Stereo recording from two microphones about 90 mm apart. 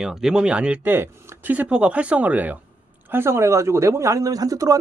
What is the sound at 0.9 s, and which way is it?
A man's voice, 25° right (ahead or behind).